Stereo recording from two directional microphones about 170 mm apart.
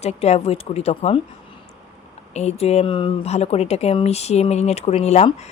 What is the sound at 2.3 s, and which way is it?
Speech, 40° left (ahead or behind).